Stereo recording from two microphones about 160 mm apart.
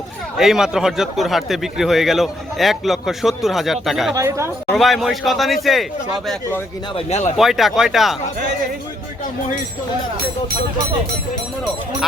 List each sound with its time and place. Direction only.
0.3 s speech: centre (ahead or behind)
4.1 s a woman's voice: 20° right (ahead or behind)
4.7 s speech: centre (ahead or behind)
6.9 s speech: 45° left (ahead or behind)
7.3 s speech: centre (ahead or behind)